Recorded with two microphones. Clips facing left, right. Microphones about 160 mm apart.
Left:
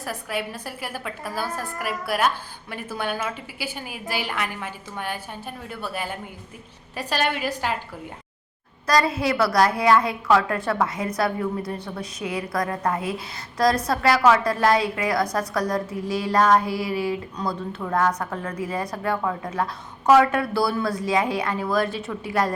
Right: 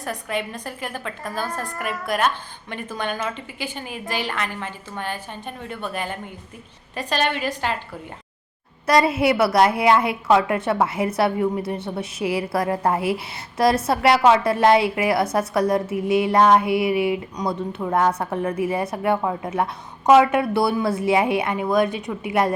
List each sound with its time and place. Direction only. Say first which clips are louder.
0.0 s a woman's voice: right 2 dB; 5° left (ahead or behind)
8.9 s a woman's voice: right 4 dB; 25° right (ahead or behind)